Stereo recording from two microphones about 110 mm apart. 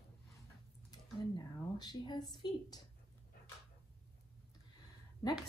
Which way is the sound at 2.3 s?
40° left (ahead or behind).